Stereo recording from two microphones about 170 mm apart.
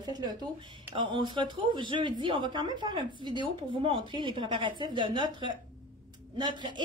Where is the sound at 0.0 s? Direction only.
20° right (ahead or behind).